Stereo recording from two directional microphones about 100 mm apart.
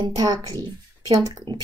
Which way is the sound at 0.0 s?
35° right (ahead or behind).